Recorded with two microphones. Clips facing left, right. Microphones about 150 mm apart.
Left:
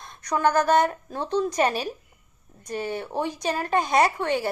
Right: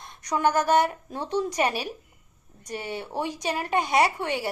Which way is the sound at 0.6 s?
15° right (ahead or behind).